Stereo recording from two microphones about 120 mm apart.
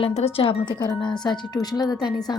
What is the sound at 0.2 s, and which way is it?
A woman's voice, 55° left (ahead or behind).